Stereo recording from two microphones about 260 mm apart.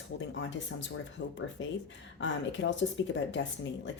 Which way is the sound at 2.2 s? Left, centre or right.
Left.